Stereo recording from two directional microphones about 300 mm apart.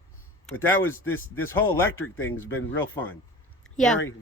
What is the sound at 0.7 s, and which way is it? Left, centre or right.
Speech, left.